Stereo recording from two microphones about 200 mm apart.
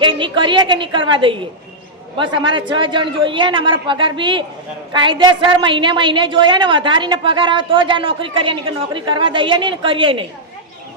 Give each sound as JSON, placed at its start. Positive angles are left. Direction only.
{"t": 0.0, "sound": "a woman's voice", "side_deg": -25}